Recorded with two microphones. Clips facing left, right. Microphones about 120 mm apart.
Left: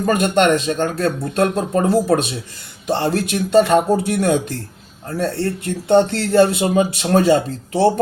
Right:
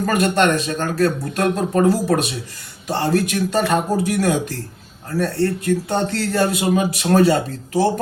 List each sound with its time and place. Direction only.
0.0 s a man's voice: 25° left (ahead or behind)